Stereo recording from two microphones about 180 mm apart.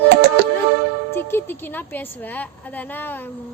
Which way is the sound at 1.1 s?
10° left (ahead or behind).